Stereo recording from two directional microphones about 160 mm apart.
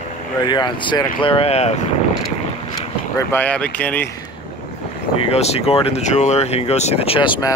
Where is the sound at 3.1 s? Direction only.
10° left (ahead or behind).